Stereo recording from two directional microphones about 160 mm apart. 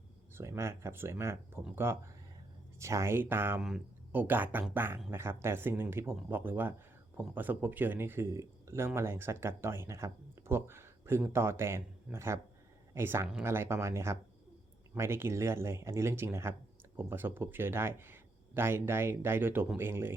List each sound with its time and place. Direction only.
0.3 s speech: 15° right (ahead or behind)